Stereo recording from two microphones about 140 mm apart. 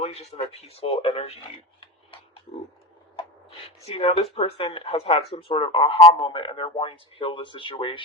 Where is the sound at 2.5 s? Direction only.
45° left (ahead or behind).